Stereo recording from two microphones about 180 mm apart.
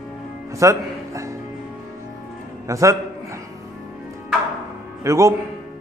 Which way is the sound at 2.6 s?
15° right (ahead or behind).